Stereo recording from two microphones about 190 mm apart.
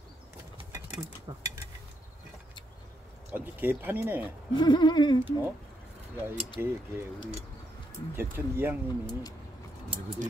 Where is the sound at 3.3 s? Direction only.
10° right (ahead or behind).